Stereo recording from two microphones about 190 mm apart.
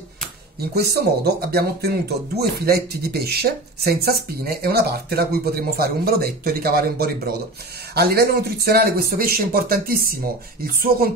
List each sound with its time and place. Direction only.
0.7 s speech: 55° right (ahead or behind)